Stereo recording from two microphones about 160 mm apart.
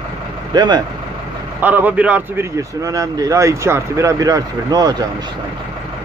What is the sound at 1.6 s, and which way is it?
Speech, 10° right (ahead or behind).